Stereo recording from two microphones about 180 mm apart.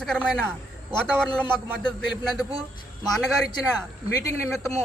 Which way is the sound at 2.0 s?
Centre (ahead or behind).